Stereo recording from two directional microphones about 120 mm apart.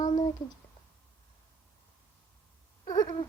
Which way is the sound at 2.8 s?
35° left (ahead or behind).